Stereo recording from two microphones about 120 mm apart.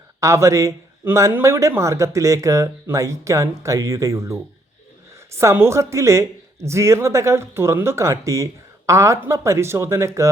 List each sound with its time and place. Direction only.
0.2 s speech: 25° right (ahead or behind)